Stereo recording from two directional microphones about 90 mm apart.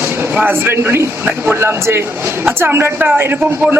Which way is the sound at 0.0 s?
20° right (ahead or behind).